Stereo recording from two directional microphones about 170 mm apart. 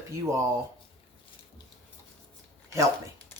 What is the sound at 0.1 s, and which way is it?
Speech, 20° right (ahead or behind).